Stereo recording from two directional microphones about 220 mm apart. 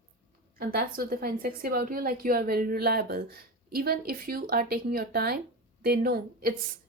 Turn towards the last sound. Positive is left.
turn(degrees=-40)  # may be behind; listen again after turning